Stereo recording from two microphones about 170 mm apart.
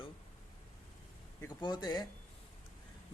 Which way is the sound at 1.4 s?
20° left (ahead or behind).